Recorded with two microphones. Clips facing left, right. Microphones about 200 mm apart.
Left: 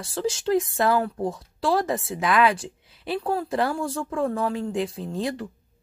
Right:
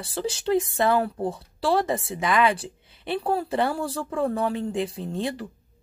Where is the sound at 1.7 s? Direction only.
Centre (ahead or behind).